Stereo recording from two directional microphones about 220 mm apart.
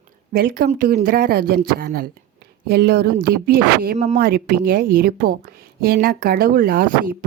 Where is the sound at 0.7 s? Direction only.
35° right (ahead or behind).